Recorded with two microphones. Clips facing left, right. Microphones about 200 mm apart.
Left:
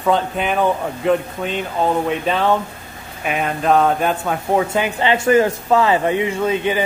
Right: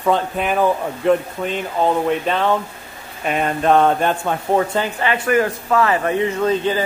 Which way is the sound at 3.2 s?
5° left (ahead or behind).